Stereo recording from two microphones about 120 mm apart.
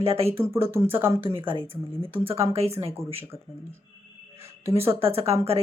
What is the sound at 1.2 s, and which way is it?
Speech, 45° right (ahead or behind).